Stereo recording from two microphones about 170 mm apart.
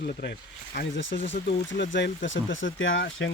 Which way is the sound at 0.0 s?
65° left (ahead or behind).